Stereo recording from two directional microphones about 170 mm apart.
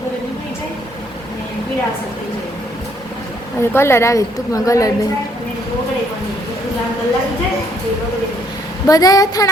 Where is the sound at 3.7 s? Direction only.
15° left (ahead or behind).